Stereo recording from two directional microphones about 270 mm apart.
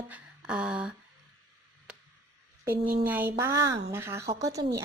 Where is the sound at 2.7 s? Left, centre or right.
Right.